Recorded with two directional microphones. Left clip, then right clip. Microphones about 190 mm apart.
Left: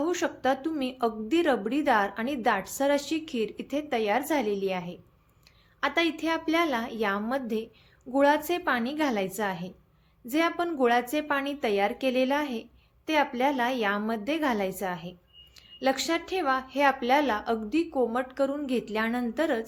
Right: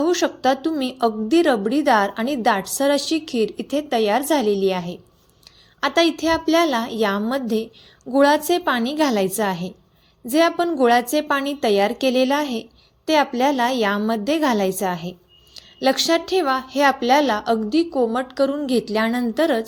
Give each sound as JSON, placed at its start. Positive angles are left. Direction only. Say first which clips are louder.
{"t": 0.0, "sound": "a woman's voice", "louder": "right 8 dB", "side_deg": -25}